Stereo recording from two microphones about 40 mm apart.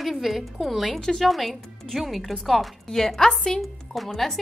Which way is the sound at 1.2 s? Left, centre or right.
Centre.